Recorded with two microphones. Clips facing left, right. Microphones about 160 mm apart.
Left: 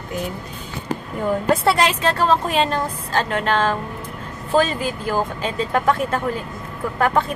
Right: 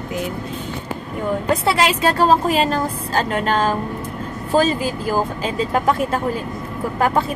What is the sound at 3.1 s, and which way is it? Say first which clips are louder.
Speech: right 1 dB; 40° right (ahead or behind).